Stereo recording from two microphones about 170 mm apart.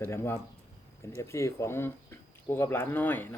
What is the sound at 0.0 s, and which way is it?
Speech, 15° left (ahead or behind).